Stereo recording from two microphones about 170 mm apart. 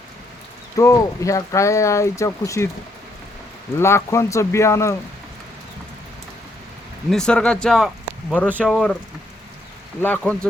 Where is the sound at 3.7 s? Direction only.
15° left (ahead or behind).